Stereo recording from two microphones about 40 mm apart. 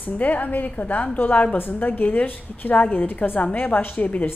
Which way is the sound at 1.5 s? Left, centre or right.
Left.